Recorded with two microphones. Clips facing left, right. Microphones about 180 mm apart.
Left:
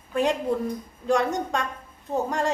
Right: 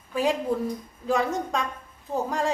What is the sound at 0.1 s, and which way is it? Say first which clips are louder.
A woman's voice: left 1 dB; centre (ahead or behind).